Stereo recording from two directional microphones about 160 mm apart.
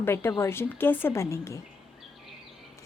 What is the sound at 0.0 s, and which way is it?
Speech, 15° left (ahead or behind).